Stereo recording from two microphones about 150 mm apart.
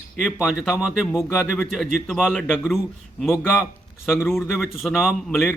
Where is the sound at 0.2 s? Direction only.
5° right (ahead or behind).